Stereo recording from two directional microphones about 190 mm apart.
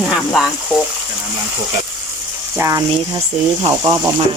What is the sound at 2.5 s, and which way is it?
Speech, 15° right (ahead or behind).